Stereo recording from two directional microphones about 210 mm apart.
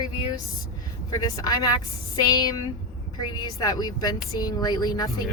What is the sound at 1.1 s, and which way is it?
A woman's voice, 15° left (ahead or behind).